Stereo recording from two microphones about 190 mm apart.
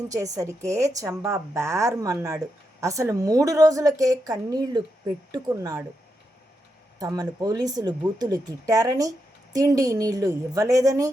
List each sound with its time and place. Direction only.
0.1 s a woman's voice: 15° right (ahead or behind)
7.0 s speech: 20° right (ahead or behind)